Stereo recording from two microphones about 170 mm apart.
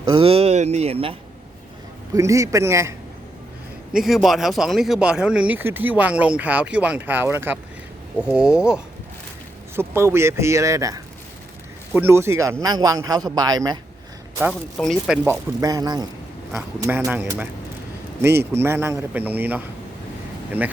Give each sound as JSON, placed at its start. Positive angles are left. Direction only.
{"t": 0.1, "sound": "speech", "side_deg": -35}
{"t": 2.1, "sound": "speech", "side_deg": -20}
{"t": 3.9, "sound": "a man's voice", "side_deg": 0}
{"t": 14.8, "sound": "speech", "side_deg": 0}
{"t": 15.6, "sound": "a man's voice", "side_deg": -20}
{"t": 18.5, "sound": "speech", "side_deg": -15}